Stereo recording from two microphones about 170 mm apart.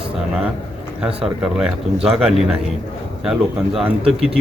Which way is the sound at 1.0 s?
5° right (ahead or behind).